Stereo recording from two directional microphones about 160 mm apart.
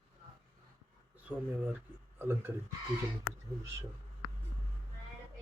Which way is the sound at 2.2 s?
15° right (ahead or behind).